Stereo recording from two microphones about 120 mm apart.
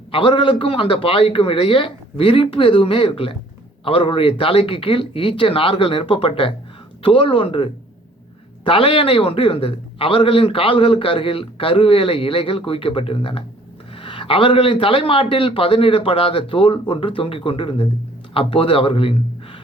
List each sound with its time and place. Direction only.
0.1 s a man's voice: 45° left (ahead or behind)